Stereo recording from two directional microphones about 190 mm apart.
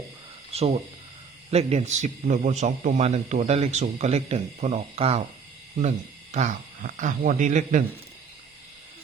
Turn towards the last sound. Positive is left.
turn(degrees=-40)  # may be behind; listen again after turning